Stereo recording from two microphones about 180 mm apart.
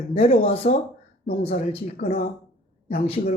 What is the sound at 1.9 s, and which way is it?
Speech, 50° left (ahead or behind).